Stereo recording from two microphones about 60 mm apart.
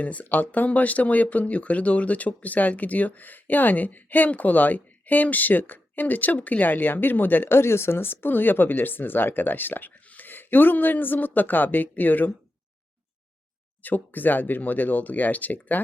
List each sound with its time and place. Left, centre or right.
0.0 s speech: left
13.8 s speech: left